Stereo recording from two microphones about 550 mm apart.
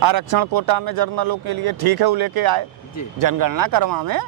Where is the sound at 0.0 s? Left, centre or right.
Right.